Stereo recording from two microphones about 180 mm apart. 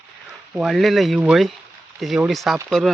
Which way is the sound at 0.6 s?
Centre (ahead or behind).